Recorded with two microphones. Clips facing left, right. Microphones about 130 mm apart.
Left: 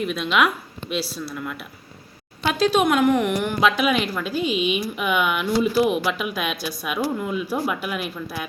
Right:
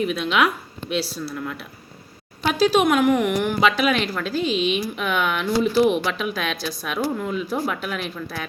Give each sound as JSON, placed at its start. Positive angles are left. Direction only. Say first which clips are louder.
{"t": 0.0, "sound": "speech", "louder": "even", "side_deg": 0}